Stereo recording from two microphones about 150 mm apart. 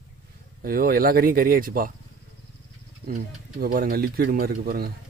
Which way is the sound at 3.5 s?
70° right (ahead or behind).